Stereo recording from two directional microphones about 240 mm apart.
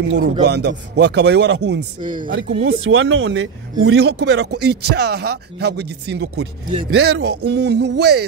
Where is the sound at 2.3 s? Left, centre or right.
Right.